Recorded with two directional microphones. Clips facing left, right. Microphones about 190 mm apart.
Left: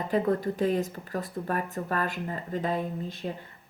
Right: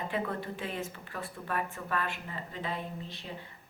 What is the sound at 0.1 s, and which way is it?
A woman's voice, 40° left (ahead or behind).